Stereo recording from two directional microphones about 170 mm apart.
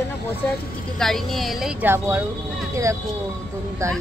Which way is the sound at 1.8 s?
15° right (ahead or behind).